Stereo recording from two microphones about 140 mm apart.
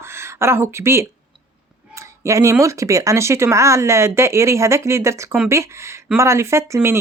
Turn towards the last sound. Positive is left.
turn(degrees=-20)  # may be behind; listen again after turning